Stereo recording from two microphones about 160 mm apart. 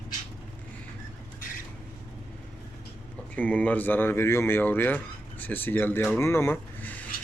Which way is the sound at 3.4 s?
10° left (ahead or behind).